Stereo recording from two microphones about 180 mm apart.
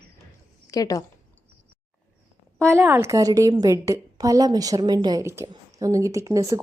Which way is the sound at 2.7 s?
15° right (ahead or behind).